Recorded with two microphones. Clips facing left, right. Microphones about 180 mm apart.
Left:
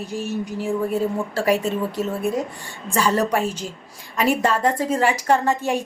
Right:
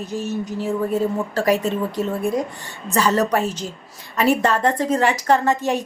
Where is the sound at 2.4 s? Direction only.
10° left (ahead or behind).